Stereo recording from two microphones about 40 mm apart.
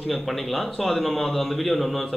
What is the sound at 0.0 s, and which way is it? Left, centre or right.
Speech, centre.